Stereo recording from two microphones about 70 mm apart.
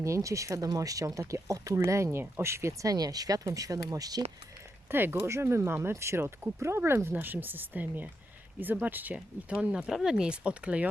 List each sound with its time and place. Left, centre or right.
0.0 s speech: right
2.9 s speech: right
4.9 s speech: right
7.1 s speech: right
9.1 s speech: centre